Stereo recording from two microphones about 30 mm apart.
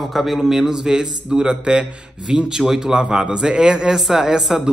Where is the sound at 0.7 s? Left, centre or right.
Right.